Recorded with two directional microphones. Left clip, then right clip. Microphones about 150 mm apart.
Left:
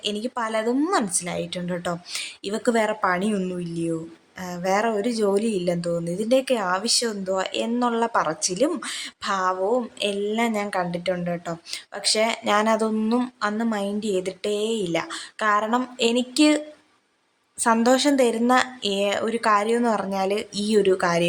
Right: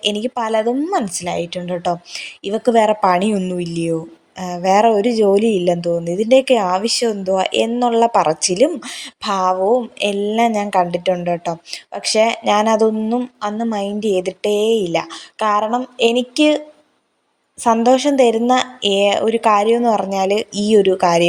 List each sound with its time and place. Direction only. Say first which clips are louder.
0.0 s a woman's voice: right 7 dB; 25° right (ahead or behind)
15.7 s a sound: right 6 dB; 10° right (ahead or behind)
16.1 s speech: right 5 dB; 30° left (ahead or behind)
18.1 s a woman's voice: right 6 dB; 20° right (ahead or behind)